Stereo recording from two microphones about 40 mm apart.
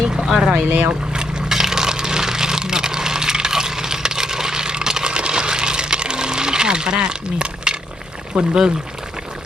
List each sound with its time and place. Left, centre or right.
0.2 s speech: centre
0.5 s speech: right
1.1 s a sound: right
8.4 s speech: centre